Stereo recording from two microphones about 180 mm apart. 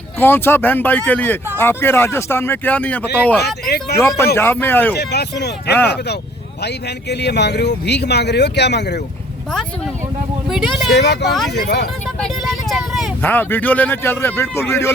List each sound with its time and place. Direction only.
0.2 s speech: 10° left (ahead or behind)
3.4 s speech: 65° left (ahead or behind)
3.9 s speech: 15° left (ahead or behind)
4.9 s speech: 65° left (ahead or behind)
9.5 s speech: centre (ahead or behind)
10.9 s speech: 70° left (ahead or behind)
11.3 s speech: centre (ahead or behind)
11.5 s speech: 65° left (ahead or behind)
12.2 s vehicle: centre (ahead or behind)
13.2 s speech: 10° left (ahead or behind)